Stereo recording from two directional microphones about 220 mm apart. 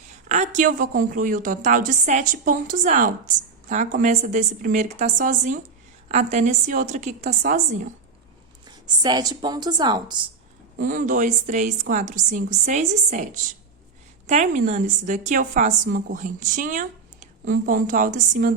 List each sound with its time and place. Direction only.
0.1 s a woman's voice: 35° right (ahead or behind)
8.6 s a woman's voice: 20° right (ahead or behind)
10.8 s a woman's voice: 35° right (ahead or behind)
14.3 s a woman's voice: 35° right (ahead or behind)